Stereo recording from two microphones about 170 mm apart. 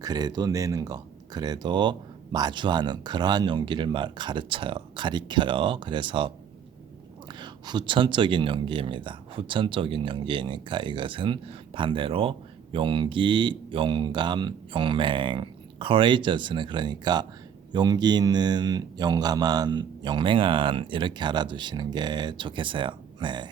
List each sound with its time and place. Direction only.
0.0 s speech: 25° right (ahead or behind)